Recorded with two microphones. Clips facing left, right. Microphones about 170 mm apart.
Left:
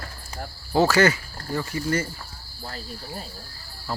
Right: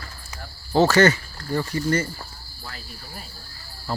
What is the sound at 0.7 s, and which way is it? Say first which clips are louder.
Speech: right 2 dB; 10° left (ahead or behind).